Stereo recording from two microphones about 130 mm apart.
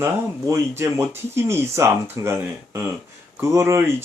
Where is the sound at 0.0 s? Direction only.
25° right (ahead or behind).